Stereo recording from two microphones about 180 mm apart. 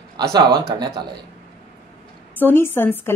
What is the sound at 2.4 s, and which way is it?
Speech, 10° left (ahead or behind).